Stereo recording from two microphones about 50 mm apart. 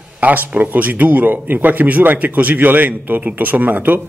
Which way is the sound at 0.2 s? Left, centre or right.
Right.